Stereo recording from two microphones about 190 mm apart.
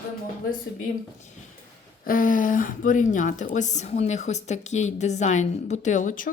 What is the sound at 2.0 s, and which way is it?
Speech, 45° left (ahead or behind).